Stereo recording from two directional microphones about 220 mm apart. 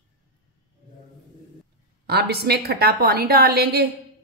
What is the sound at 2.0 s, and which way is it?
A woman's voice, 45° right (ahead or behind).